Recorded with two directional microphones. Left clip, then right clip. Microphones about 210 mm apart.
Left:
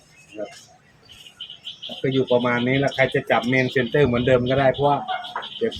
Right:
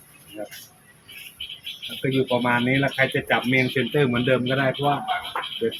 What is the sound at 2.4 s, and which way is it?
Speech, 10° left (ahead or behind).